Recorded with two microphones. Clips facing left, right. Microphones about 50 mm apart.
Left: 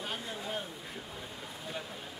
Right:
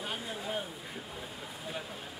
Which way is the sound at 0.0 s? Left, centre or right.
Centre.